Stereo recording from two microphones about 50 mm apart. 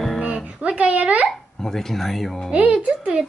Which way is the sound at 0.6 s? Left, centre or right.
Right.